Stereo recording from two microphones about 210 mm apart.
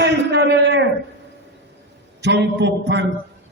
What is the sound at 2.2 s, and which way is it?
Speech, 55° right (ahead or behind).